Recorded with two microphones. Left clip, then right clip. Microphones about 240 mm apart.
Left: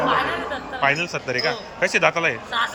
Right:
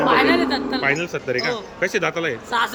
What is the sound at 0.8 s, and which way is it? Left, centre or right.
A man's voice, centre.